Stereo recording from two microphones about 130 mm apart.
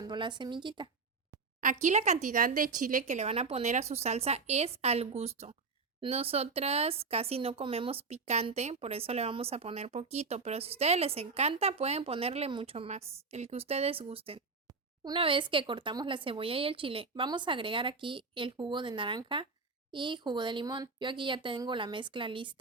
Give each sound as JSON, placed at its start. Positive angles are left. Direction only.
{"t": 0.0, "sound": "a woman's voice", "side_deg": -35}
{"t": 1.6, "sound": "speech", "side_deg": -65}
{"t": 14.7, "sound": "a sound", "side_deg": -30}
{"t": 15.2, "sound": "a woman's voice", "side_deg": -40}